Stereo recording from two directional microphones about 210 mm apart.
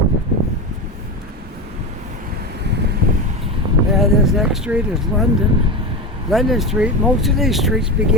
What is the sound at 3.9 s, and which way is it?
Vehicle, centre (ahead or behind).